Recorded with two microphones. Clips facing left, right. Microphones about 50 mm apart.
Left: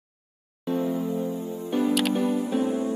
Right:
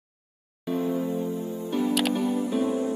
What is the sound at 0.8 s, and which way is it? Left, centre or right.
Music, right.